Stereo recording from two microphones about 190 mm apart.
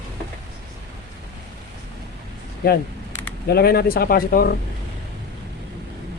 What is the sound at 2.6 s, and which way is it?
Speech, 55° left (ahead or behind).